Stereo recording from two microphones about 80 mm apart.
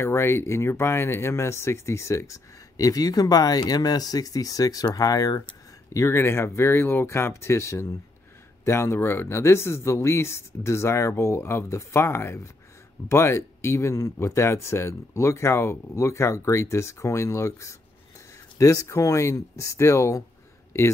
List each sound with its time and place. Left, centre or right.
0.0 s speech: left
5.9 s speech: left